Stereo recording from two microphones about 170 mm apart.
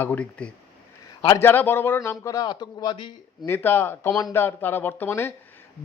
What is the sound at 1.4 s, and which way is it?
Speech, 10° left (ahead or behind).